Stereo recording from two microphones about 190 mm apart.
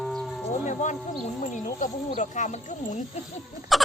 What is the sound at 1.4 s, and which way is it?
Speech, 40° left (ahead or behind).